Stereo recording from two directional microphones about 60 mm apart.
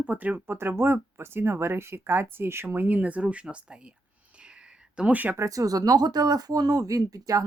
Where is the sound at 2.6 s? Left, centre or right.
Right.